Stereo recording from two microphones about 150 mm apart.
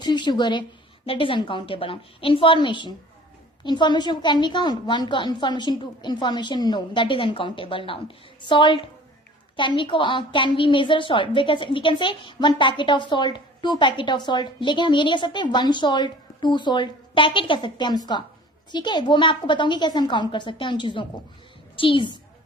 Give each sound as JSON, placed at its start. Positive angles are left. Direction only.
{"t": 0.0, "sound": "a woman's voice", "side_deg": 30}